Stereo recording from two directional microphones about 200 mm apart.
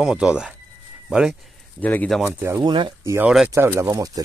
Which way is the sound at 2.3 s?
10° right (ahead or behind).